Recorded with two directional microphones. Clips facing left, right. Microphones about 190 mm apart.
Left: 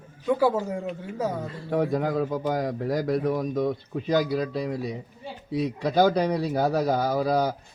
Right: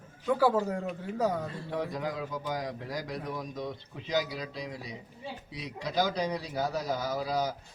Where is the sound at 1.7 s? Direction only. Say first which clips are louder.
Left 11 dB; 55° left (ahead or behind).